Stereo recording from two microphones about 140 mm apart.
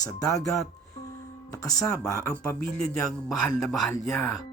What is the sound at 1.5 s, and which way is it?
Speech, 20° left (ahead or behind).